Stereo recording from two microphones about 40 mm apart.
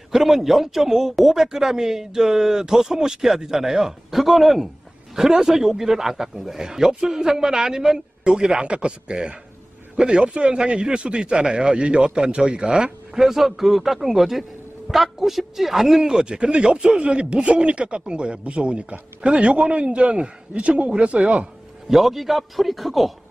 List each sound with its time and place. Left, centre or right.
0.1 s a man's voice: centre
13.2 s a man's voice: centre; by 21.5 s right
21.8 s a man's voice: centre